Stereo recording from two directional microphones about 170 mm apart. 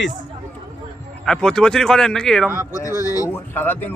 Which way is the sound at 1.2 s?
5° left (ahead or behind).